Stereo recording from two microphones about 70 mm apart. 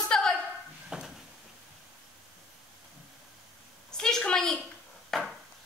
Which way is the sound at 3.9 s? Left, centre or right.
Centre.